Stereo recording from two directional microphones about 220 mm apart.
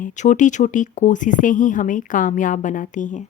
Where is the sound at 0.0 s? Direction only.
35° left (ahead or behind).